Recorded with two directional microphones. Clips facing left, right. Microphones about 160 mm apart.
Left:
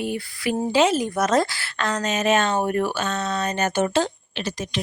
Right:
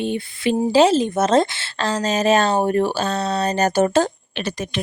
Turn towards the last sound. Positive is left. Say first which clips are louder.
# right 3 dB
turn(degrees=-55)  # may be behind; listen again after turning